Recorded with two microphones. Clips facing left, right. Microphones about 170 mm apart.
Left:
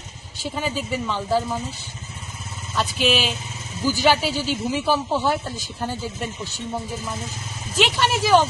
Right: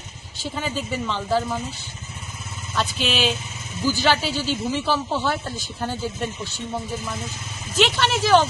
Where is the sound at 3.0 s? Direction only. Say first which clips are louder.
Left 3 dB; 5° left (ahead or behind).